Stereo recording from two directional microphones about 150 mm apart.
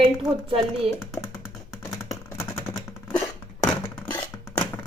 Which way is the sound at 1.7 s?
20° left (ahead or behind).